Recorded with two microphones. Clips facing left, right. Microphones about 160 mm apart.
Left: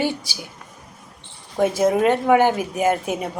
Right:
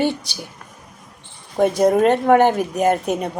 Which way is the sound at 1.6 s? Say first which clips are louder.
Right 3 dB; 5° left (ahead or behind).